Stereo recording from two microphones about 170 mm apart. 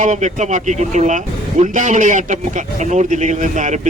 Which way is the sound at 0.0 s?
45° right (ahead or behind).